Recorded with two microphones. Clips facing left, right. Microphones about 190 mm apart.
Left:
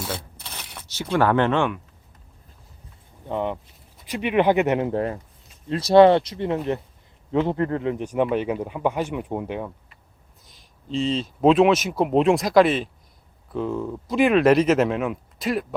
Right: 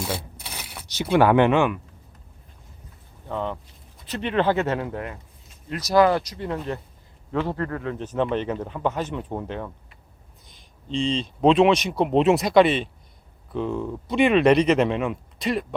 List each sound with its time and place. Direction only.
0.0 s a sound: 10° right (ahead or behind)
0.9 s speech: 15° right (ahead or behind)
3.2 s speech: 15° left (ahead or behind)
10.4 s speech: centre (ahead or behind)